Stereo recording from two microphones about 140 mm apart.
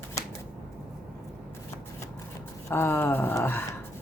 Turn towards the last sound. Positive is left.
turn(degrees=15)  # may be behind; listen again after turning